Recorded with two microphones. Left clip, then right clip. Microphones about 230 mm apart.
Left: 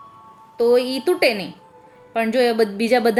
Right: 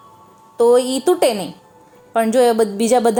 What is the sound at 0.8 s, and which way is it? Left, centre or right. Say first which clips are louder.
Speech: right 3 dB; right.